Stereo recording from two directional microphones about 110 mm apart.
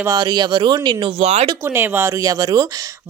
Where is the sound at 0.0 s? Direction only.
35° right (ahead or behind).